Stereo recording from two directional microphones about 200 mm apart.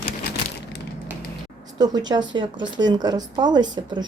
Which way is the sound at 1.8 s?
20° right (ahead or behind).